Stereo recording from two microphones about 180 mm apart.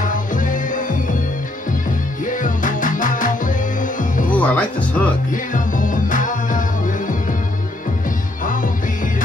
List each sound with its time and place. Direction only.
0.0 s music: 45° left (ahead or behind)
2.2 s music: 45° left (ahead or behind)
4.3 s music: 10° left (ahead or behind)
5.3 s music: 45° left (ahead or behind)